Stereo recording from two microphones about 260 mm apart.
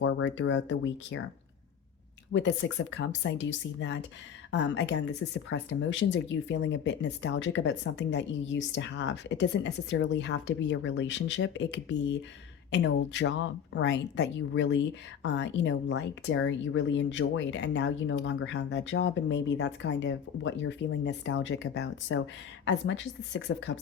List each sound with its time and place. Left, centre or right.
0.0 s speech: left
2.3 s speech: left